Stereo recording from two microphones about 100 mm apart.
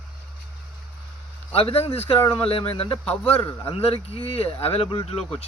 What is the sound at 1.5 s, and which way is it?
A man's voice, 80° left.